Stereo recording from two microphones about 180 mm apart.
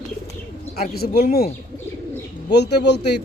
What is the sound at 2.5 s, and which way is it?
Speech, 70° left (ahead or behind).